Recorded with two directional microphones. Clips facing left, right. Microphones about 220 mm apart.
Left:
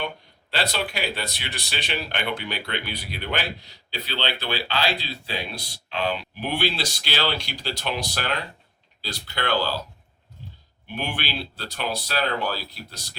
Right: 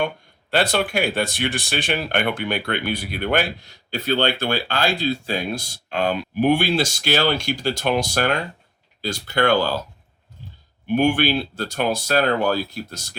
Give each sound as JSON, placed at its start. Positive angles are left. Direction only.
{"t": 0.5, "sound": "speech", "side_deg": -50}
{"t": 10.8, "sound": "speech", "side_deg": -50}